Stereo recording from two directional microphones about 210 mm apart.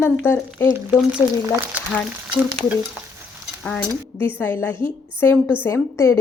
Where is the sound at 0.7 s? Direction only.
10° right (ahead or behind).